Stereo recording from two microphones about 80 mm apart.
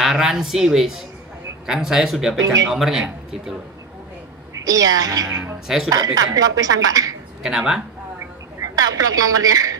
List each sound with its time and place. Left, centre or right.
0.0 s speech: centre
2.4 s a woman's voice: right
2.7 s speech: centre
4.6 s a woman's voice: right
5.3 s speech: right
5.9 s a woman's voice: right
7.4 s speech: centre
8.7 s a woman's voice: right